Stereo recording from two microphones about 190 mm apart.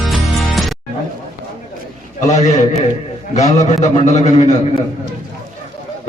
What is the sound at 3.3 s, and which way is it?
A man's voice, 35° left (ahead or behind).